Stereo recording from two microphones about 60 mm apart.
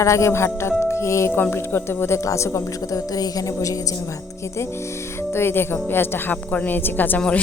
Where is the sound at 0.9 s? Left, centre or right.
Left.